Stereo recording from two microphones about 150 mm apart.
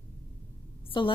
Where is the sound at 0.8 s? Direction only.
35° left (ahead or behind).